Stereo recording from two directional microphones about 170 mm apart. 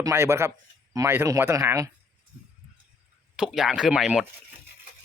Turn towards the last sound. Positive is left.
turn(degrees=-5)  # may be behind; listen again after turning